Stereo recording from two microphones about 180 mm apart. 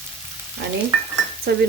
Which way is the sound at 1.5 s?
65° right (ahead or behind).